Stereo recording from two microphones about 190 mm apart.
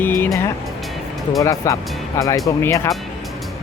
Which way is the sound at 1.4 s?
15° left (ahead or behind).